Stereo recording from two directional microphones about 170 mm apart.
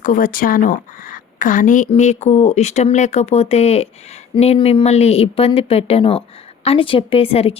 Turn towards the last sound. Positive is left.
turn(degrees=35)  # may be behind; listen again after turning